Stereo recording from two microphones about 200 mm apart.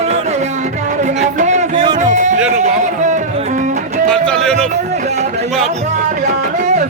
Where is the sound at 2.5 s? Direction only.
35° right (ahead or behind).